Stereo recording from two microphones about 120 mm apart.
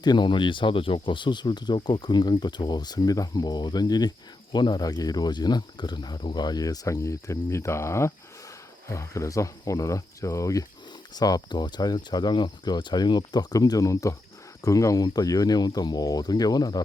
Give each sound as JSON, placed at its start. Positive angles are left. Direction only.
{"t": 0.0, "sound": "speech", "side_deg": 35}